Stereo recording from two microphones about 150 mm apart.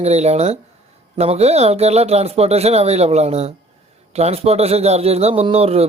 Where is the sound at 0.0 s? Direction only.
45° right (ahead or behind).